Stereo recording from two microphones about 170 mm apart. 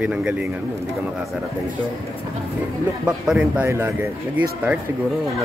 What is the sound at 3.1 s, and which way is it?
Speech, 5° right (ahead or behind).